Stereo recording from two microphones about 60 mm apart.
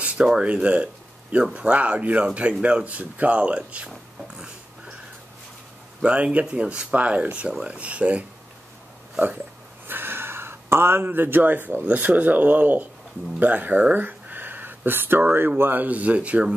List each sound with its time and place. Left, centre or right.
0.2 s speech: centre
4.4 s a sound: centre
5.9 s speech: centre
9.8 s speech: right